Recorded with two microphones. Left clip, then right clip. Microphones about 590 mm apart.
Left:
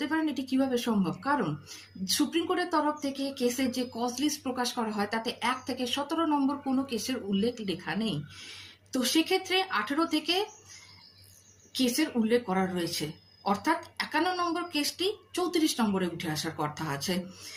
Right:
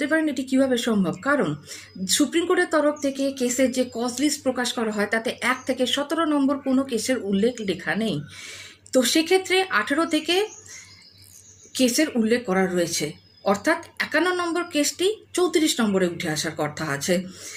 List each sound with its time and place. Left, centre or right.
0.0 s speech: left
11.7 s speech: left